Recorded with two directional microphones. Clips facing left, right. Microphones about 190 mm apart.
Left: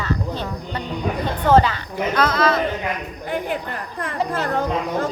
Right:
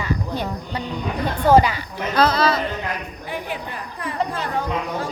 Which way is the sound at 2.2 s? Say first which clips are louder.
Right 3 dB; 30° right (ahead or behind).